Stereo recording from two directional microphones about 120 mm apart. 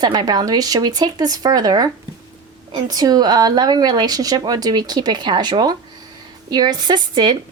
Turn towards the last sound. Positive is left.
turn(degrees=-35)  # may be behind; listen again after turning